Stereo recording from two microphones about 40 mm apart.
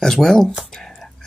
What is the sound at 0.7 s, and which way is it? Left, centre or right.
Whispering, centre.